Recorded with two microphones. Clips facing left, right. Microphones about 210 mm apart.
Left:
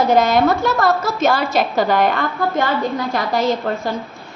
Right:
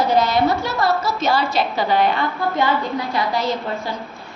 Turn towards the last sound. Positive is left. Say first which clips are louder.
# left 3 dB
turn(degrees=45)  # may be behind; listen again after turning